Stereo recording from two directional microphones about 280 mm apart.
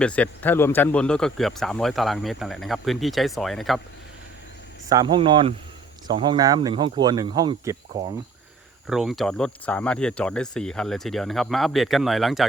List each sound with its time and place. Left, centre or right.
0.0 s speech: centre
4.9 s speech: centre
8.9 s speech: centre